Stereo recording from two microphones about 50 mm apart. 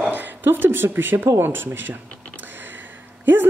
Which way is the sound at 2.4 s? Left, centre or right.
Right.